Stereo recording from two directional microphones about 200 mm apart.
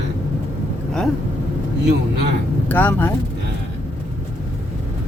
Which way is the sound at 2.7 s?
10° left (ahead or behind).